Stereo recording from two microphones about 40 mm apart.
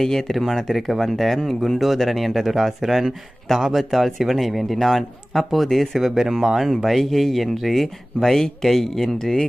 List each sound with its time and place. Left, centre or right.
0.0 s speech: centre
6.0 s speech: centre